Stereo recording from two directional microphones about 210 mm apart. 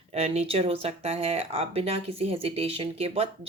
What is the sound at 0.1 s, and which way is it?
Speech, 30° right (ahead or behind).